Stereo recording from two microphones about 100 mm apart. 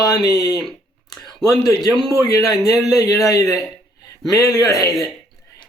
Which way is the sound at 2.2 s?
35° left (ahead or behind).